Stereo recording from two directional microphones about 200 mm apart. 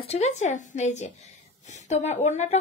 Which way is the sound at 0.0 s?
35° left (ahead or behind).